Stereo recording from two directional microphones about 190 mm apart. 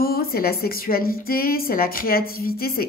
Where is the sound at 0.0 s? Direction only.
50° left (ahead or behind).